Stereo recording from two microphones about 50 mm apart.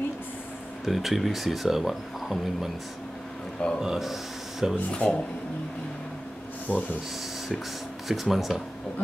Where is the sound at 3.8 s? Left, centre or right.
Centre.